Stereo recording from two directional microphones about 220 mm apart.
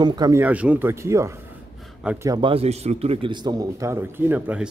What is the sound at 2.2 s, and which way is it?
A man's voice, 20° right (ahead or behind).